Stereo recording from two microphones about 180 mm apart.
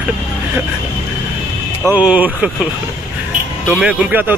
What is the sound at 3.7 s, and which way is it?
Speech, 5° right (ahead or behind).